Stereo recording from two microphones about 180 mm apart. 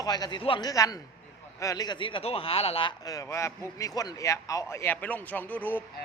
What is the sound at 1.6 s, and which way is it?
A man's voice, 20° left (ahead or behind).